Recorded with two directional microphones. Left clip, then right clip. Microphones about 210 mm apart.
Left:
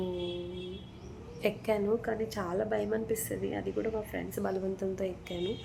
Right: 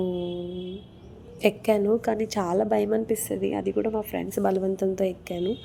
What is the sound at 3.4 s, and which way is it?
Speech, 55° right (ahead or behind).